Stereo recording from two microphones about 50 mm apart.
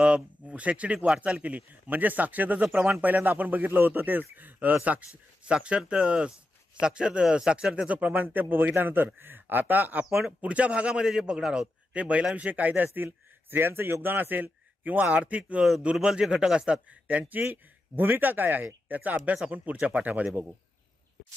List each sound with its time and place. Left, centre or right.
0.0 s a man's voice: right
10.4 s a man's voice: right
15.8 s a man's voice: centre